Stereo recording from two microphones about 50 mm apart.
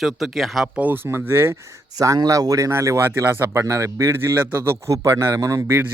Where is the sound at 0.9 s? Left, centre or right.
Right.